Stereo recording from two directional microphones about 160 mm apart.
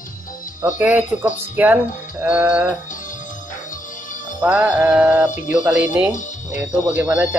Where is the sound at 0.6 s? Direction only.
10° right (ahead or behind).